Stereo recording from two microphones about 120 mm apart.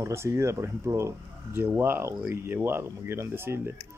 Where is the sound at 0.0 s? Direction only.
25° right (ahead or behind).